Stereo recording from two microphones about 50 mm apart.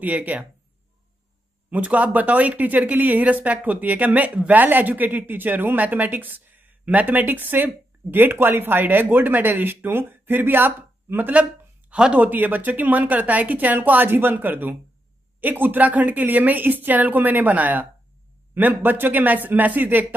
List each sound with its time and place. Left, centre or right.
0.0 s a woman's voice: right
1.7 s a woman's voice: right
11.9 s speech: right
12.2 s a woman's voice: right